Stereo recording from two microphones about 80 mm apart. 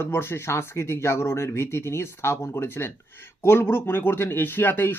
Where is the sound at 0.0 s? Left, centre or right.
Left.